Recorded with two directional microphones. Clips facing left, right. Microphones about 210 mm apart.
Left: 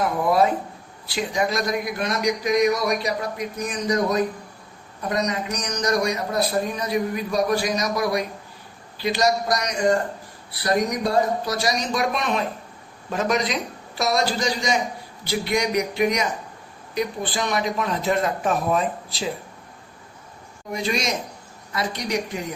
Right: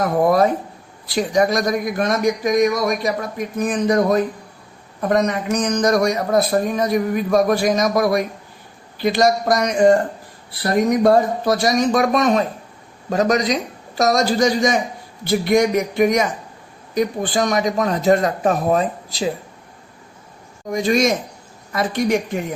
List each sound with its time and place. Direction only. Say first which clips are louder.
0.0 s a man's voice: right 4 dB; 45° right (ahead or behind)
20.7 s a man's voice: right 8 dB; 45° right (ahead or behind)